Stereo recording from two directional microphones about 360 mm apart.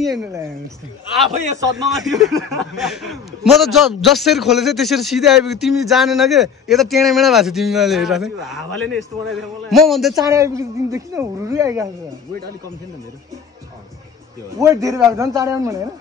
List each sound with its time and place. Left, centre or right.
0.0 s a man's voice: centre
1.3 s a man's voice: centre
1.6 s a man's voice: centre
14.6 s a man's voice: centre